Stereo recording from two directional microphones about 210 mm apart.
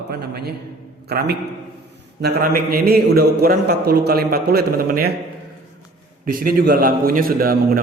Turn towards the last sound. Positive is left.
turn(degrees=-45)  # may be behind; listen again after turning